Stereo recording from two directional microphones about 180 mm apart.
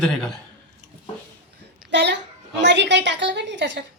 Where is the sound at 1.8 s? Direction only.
75° right (ahead or behind).